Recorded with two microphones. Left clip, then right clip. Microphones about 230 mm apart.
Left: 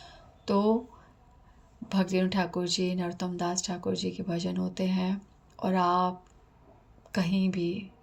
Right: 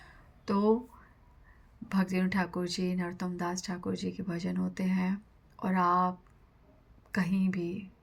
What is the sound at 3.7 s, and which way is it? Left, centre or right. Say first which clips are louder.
Speech: left 5 dB; right.